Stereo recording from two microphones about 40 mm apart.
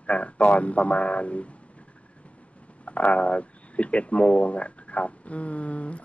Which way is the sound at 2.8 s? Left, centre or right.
Left.